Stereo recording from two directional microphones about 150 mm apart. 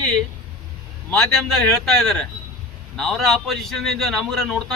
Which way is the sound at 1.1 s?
Centre (ahead or behind).